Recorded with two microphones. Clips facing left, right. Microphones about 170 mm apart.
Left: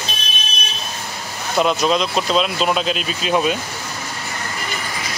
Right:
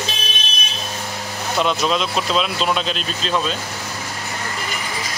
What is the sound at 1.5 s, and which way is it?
Speech, centre (ahead or behind).